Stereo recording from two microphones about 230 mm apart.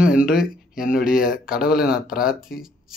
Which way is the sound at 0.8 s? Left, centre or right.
Left.